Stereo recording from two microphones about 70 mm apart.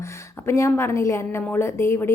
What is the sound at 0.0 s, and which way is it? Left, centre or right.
A woman's voice, left.